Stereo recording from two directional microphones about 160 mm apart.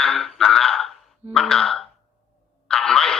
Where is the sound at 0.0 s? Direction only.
5° left (ahead or behind).